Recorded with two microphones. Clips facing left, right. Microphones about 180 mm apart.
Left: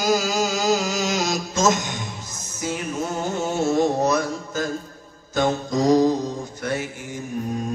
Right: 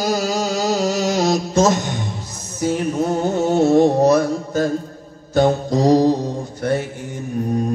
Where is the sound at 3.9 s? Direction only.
30° right (ahead or behind).